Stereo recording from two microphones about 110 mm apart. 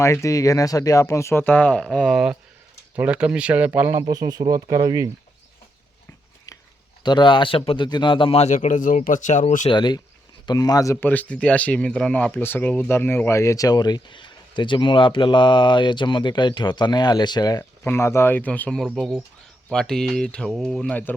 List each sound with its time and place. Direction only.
0.0 s speech: 25° left (ahead or behind); by 4.0 s 15° right (ahead or behind)
4.1 s speech: 35° right (ahead or behind)
7.0 s speech: 45° left (ahead or behind)
7.9 s speech: 45° left (ahead or behind); by 8.5 s 65° left (ahead or behind)
9.0 s speech: 90° left
9.6 s speech: 45° left (ahead or behind)
11.0 s speech: 15° left (ahead or behind)
12.3 s speech: 20° left (ahead or behind); by 17.7 s 35° left (ahead or behind)
17.8 s speech: 25° left (ahead or behind)
18.8 s speech: centre (ahead or behind)
19.7 s speech: 5° left (ahead or behind)
20.9 s speech: 15° left (ahead or behind)